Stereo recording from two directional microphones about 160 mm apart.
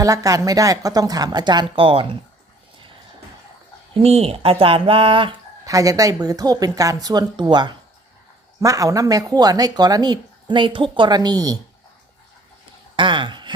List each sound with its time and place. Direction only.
0.0 s speech: 20° right (ahead or behind)
4.0 s speech: 40° right (ahead or behind)
5.6 s speech: 20° right (ahead or behind)
13.0 s a sound: 30° right (ahead or behind)